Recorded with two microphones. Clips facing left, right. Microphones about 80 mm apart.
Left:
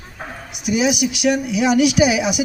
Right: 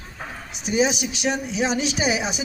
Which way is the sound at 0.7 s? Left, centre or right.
Right.